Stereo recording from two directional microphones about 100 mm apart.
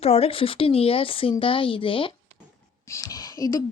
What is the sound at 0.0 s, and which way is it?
Speech, 85° left.